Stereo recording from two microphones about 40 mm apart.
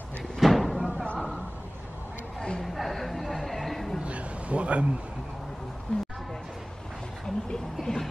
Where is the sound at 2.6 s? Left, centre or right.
Centre.